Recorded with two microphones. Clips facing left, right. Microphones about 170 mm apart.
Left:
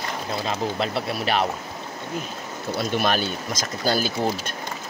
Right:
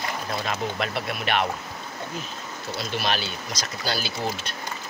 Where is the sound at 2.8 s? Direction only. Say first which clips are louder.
Left 5 dB; 50° left (ahead or behind).